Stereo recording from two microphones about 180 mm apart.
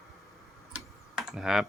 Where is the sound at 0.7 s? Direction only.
Centre (ahead or behind).